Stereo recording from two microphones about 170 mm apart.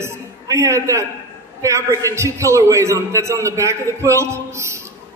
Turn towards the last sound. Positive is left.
turn(degrees=-15)  # may be behind; listen again after turning